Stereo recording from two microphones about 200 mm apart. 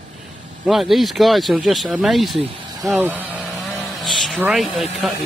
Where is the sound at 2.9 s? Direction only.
10° right (ahead or behind).